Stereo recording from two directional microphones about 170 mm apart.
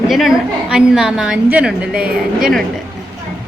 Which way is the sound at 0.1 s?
Centre (ahead or behind).